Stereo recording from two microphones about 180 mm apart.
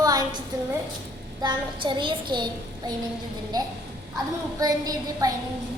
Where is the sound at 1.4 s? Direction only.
25° right (ahead or behind).